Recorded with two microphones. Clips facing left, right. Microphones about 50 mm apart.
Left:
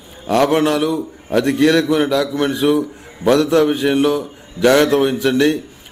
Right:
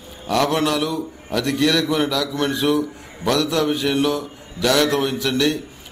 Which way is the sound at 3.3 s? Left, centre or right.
Left.